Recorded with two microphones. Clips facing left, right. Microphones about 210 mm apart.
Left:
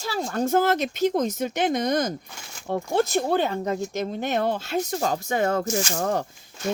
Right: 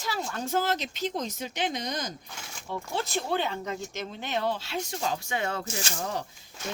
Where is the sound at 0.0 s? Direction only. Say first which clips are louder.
Left 7 dB; 40° left (ahead or behind).